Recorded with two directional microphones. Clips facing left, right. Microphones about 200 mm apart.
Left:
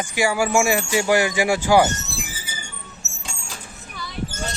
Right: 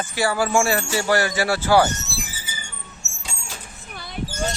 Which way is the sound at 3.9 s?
55° right (ahead or behind).